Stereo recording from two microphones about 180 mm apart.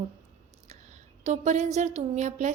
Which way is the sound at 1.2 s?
40° right (ahead or behind).